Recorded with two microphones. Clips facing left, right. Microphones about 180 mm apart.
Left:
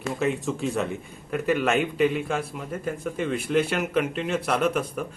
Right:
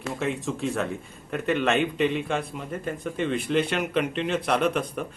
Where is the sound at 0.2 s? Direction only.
Centre (ahead or behind).